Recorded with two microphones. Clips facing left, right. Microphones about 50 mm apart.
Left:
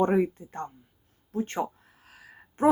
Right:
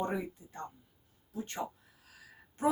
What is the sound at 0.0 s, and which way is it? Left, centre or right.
Speech, left.